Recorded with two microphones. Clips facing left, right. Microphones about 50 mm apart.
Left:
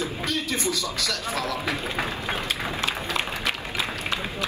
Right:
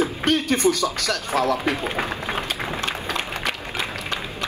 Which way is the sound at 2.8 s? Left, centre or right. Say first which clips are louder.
Right 1 dB; right.